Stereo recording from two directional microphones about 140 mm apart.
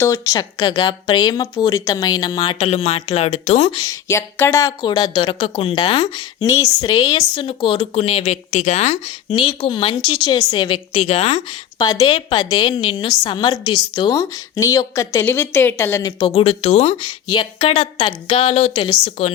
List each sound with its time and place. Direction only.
0.0 s a woman's voice: 20° left (ahead or behind); by 3.8 s 50° left (ahead or behind)
4.1 s a woman's voice: 20° left (ahead or behind); by 9.0 s 55° left (ahead or behind)
9.3 s a woman's voice: 35° left (ahead or behind)
11.8 s a woman's voice: 30° left (ahead or behind)
16.1 s a woman's voice: 35° left (ahead or behind)
17.1 s a woman's voice: 35° left (ahead or behind)
18.9 s a woman's voice: 35° left (ahead or behind)